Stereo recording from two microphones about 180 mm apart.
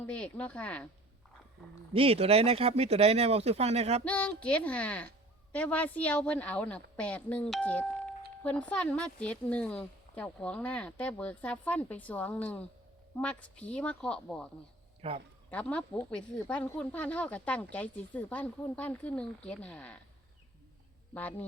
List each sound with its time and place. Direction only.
0.0 s a woman's voice: 5° left (ahead or behind)
1.9 s speech: 30° right (ahead or behind)
4.0 s a woman's voice: 5° left (ahead or behind)
15.0 s speech: 35° right (ahead or behind)
15.4 s a woman's voice: 5° left (ahead or behind)
21.1 s a woman's voice: 10° left (ahead or behind)